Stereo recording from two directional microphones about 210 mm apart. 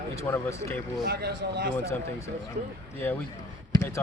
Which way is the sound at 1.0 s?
50° right (ahead or behind).